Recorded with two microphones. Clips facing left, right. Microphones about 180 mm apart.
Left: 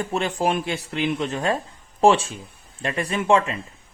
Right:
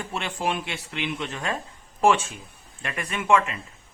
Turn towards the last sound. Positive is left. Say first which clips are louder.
# left 3 dB
turn(degrees=30)  # may be behind; listen again after turning